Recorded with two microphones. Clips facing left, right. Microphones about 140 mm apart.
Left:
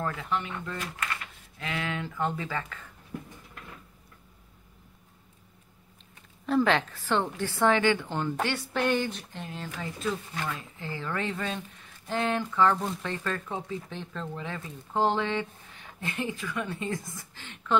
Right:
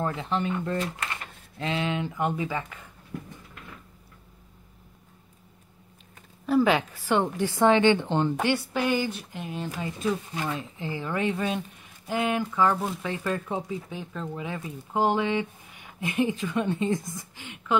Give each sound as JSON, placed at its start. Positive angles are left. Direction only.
{"t": 0.0, "sound": "speech", "side_deg": -25}
{"t": 6.4, "sound": "speech", "side_deg": -5}